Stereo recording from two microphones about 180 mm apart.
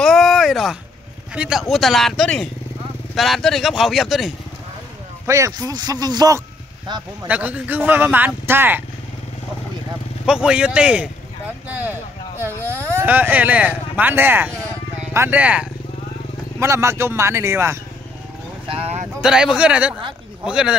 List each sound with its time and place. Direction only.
0.0 s a sound: centre (ahead or behind)
1.3 s speech: 5° right (ahead or behind)
5.2 s speech: 15° right (ahead or behind)
7.2 s speech: 10° right (ahead or behind)
10.2 s speech: 5° right (ahead or behind)
18.7 s vehicle: 35° right (ahead or behind)
19.2 s speech: 5° right (ahead or behind)